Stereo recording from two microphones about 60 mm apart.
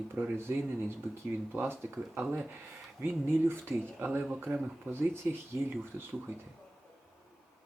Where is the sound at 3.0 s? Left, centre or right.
Right.